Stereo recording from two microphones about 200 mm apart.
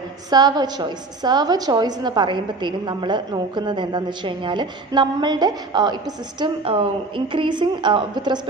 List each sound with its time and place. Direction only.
0.3 s a woman's voice: 20° right (ahead or behind)